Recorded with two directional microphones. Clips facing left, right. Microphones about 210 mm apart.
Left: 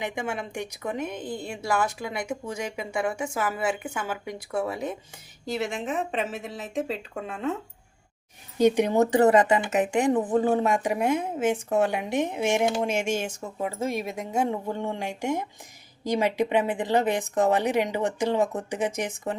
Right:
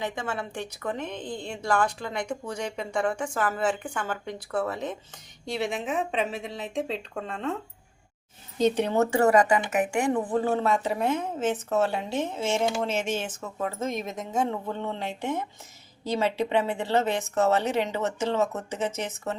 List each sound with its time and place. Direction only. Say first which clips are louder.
0.0 s a woman's voice: left 1 dB; 15° left (ahead or behind)
5.5 s a woman's voice: even; centre (ahead or behind)